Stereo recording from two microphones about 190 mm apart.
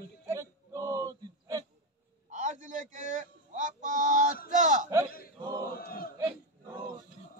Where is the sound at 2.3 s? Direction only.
40° right (ahead or behind).